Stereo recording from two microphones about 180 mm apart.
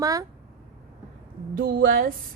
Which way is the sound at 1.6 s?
55° right (ahead or behind).